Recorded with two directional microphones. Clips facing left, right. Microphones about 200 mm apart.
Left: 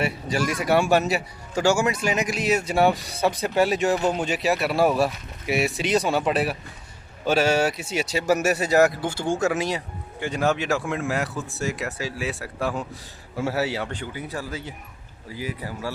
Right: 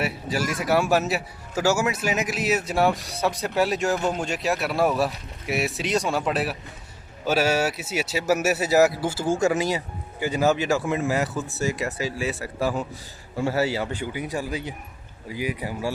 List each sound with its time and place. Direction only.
0.0 s a man's voice: 5° right (ahead or behind)